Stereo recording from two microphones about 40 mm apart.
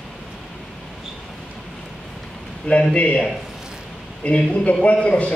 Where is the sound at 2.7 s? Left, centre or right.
Left.